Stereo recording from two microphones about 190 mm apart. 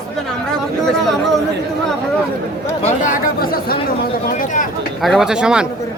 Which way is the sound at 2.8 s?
45° left (ahead or behind).